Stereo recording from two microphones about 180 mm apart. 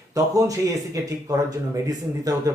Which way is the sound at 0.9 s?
20° right (ahead or behind).